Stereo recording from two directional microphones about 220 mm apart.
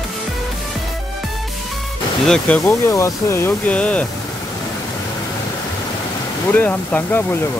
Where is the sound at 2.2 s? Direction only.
5° left (ahead or behind).